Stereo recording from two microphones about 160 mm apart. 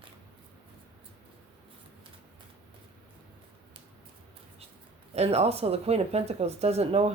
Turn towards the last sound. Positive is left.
turn(degrees=-40)  # may be behind; listen again after turning